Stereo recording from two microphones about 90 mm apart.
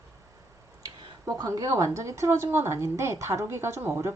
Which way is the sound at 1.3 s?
40° right (ahead or behind).